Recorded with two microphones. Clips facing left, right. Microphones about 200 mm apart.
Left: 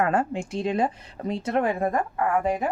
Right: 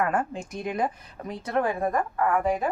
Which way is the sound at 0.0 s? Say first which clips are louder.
Left 3 dB; 30° left (ahead or behind).